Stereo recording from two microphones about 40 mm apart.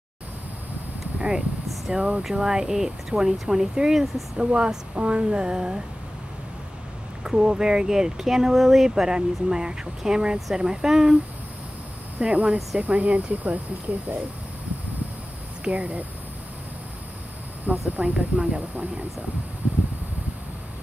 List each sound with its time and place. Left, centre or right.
1.9 s speech: right
4.4 s speech: right
7.2 s speech: centre
12.2 s speech: right
12.8 s speech: right
15.6 s speech: right
17.6 s speech: right